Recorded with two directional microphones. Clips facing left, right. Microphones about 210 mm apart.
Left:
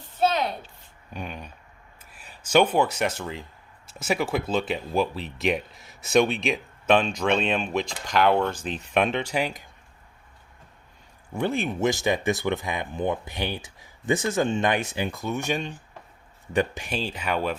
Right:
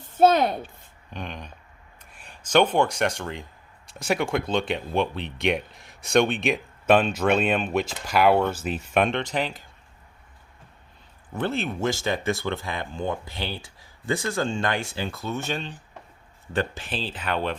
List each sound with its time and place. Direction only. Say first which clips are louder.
0.1 s speech: right 6 dB; 50° right (ahead or behind)
1.1 s speech: even; 5° left (ahead or behind)
11.3 s speech: left 1 dB; 15° left (ahead or behind)